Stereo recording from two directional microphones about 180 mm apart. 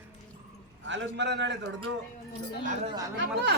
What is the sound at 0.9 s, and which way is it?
Speech, 85° right.